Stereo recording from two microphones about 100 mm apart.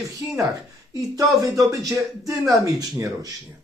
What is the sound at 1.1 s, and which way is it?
Speech, 35° right (ahead or behind).